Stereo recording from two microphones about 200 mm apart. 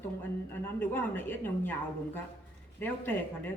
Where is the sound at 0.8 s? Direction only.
10° left (ahead or behind).